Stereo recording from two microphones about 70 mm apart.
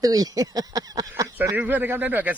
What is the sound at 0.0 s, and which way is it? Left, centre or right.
Speech, right.